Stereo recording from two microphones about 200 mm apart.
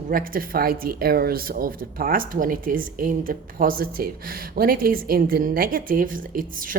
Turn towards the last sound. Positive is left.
turn(degrees=-45)  # may be behind; listen again after turning